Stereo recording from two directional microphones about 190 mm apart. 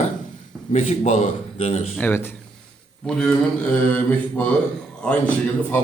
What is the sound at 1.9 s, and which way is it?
Speech, 10° left (ahead or behind).